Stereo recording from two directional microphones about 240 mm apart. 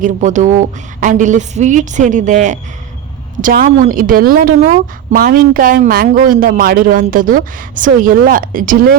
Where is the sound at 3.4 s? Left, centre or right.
Right.